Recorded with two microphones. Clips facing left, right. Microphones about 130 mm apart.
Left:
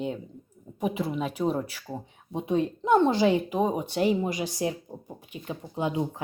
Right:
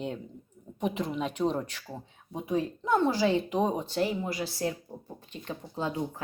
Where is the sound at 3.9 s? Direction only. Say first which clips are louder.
Left 4 dB; 20° left (ahead or behind).